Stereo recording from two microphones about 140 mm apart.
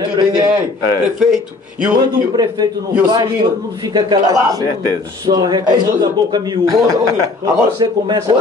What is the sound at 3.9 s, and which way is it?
A man's voice, 30° right (ahead or behind).